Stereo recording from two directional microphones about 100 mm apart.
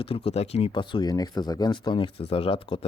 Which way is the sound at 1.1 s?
40° left (ahead or behind).